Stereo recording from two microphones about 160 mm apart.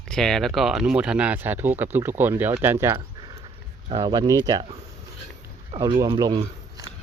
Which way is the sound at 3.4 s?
35° right (ahead or behind).